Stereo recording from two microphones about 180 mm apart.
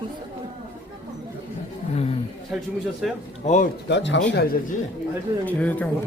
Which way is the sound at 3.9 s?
75° left (ahead or behind).